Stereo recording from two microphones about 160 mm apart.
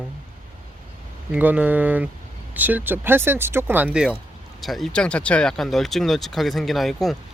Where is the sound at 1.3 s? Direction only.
10° right (ahead or behind).